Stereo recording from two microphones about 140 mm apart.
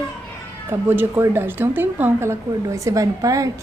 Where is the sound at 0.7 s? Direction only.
15° right (ahead or behind).